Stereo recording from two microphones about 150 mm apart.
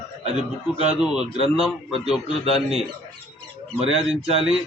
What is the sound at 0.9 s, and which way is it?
A man's voice, 5° right (ahead or behind).